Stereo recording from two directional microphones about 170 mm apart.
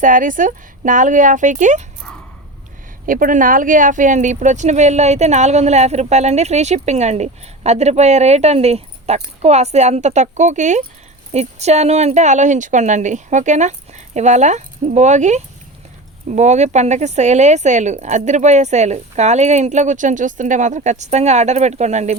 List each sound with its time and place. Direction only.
0.0 s speech: 50° right (ahead or behind)
3.1 s speech: 55° right (ahead or behind)